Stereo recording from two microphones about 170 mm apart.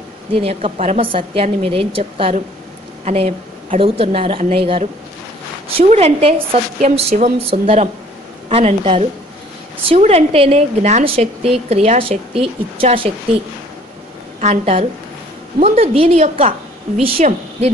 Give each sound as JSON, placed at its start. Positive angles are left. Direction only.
{"t": 0.4, "sound": "a woman's voice", "side_deg": -35}
{"t": 14.4, "sound": "a woman's voice", "side_deg": -40}